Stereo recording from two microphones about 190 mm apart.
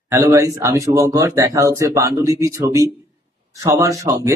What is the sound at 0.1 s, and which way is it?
A man's voice, 15° right (ahead or behind).